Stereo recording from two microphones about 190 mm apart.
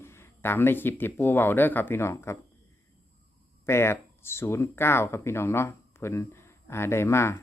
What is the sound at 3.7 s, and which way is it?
Speech, 15° left (ahead or behind).